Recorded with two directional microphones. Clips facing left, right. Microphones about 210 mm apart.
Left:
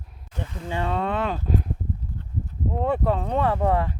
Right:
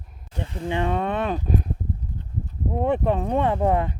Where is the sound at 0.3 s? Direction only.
30° right (ahead or behind).